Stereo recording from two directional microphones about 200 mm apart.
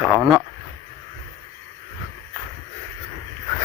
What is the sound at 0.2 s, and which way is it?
Speech, centre (ahead or behind).